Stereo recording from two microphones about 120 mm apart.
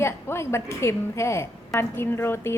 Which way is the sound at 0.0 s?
20° left (ahead or behind).